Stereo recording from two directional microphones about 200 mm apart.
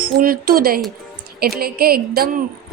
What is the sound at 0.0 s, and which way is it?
A woman's voice, 45° right (ahead or behind).